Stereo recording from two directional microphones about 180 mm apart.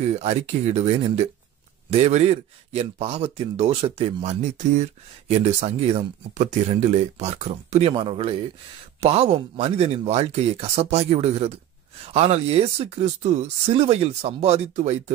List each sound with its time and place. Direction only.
0.2 s speech: 35° right (ahead or behind)